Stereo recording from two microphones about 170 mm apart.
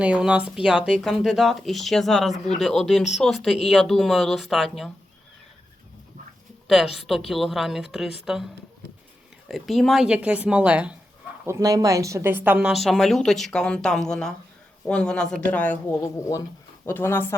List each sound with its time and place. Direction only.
0.0 s a woman's voice: 5° right (ahead or behind)
6.7 s a woman's voice: centre (ahead or behind)
9.5 s a woman's voice: centre (ahead or behind)
11.4 s a woman's voice: 20° right (ahead or behind); by 17.3 s 15° left (ahead or behind)